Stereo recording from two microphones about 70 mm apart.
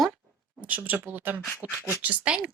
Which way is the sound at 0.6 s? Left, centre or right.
Right.